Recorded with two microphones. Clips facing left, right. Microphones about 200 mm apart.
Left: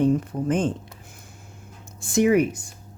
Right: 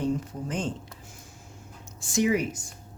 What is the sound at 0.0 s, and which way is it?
Speech, 55° left (ahead or behind).